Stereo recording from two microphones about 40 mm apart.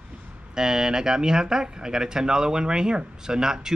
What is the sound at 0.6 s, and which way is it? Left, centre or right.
Speech, centre.